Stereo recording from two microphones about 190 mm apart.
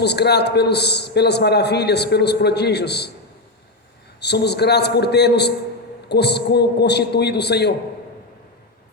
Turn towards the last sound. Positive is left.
turn(degrees=60)  # may be behind; listen again after turning